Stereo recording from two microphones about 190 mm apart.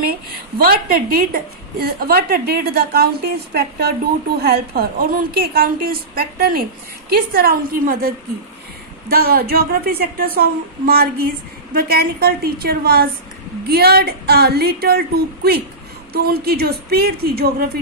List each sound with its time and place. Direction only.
0.6 s a woman's voice: 50° right (ahead or behind)
9.1 s a woman's voice: 50° right (ahead or behind)